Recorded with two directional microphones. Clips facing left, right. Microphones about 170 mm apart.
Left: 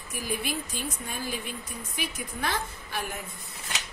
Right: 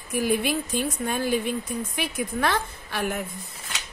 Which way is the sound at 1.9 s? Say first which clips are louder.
Right 4 dB; 70° right (ahead or behind).